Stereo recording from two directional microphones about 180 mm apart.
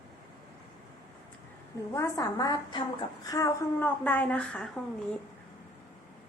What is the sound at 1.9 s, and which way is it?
A woman's voice, 20° left (ahead or behind).